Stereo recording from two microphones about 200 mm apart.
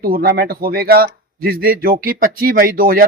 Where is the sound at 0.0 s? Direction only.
50° right (ahead or behind).